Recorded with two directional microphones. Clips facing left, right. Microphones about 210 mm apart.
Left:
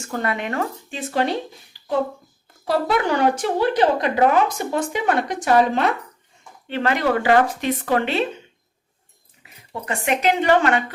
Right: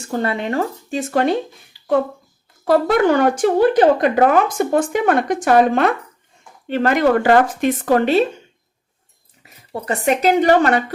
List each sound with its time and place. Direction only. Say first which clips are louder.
0.0 s speech: right 4 dB; 30° right (ahead or behind); by 1.4 s 50° right (ahead or behind)
2.6 s speech: right 6 dB; 50° right (ahead or behind)
9.8 s speech: right 4 dB; 35° right (ahead or behind)